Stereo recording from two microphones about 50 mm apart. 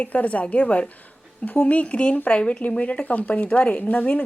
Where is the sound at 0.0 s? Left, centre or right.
Left.